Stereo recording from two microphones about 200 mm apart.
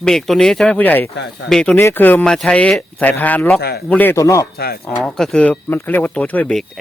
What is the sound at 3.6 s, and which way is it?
Speech, 55° left (ahead or behind).